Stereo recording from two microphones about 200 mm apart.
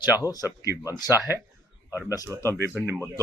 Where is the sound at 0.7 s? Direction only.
5° right (ahead or behind).